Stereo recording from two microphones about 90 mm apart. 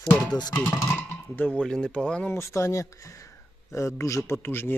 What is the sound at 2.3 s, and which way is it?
Speech, 35° left (ahead or behind).